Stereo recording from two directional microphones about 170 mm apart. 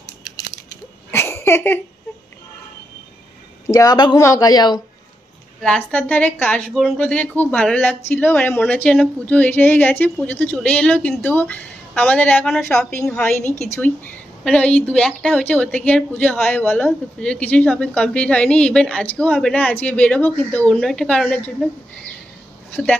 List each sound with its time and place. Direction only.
1.1 s a sound: 15° left (ahead or behind)
3.6 s speech: 20° left (ahead or behind)
5.6 s a woman's voice: 5° left (ahead or behind)